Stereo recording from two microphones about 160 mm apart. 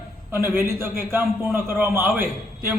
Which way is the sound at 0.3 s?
15° right (ahead or behind).